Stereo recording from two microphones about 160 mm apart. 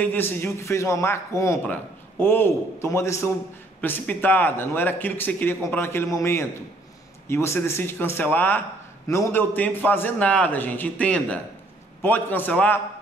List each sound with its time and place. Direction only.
0.0 s a man's voice: 10° left (ahead or behind)